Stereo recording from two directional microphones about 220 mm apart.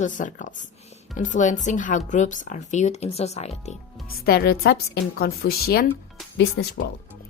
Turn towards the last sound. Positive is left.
turn(degrees=55)  # may be behind; listen again after turning